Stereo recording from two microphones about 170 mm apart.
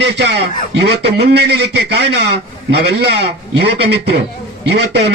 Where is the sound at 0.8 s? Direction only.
75° right (ahead or behind).